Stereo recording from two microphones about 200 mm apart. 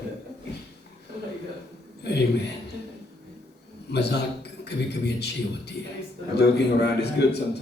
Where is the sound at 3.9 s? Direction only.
55° left (ahead or behind).